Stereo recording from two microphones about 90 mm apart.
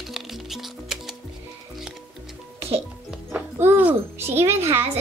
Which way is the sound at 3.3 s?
25° right (ahead or behind).